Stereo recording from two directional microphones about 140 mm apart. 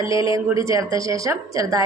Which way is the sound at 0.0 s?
25° right (ahead or behind).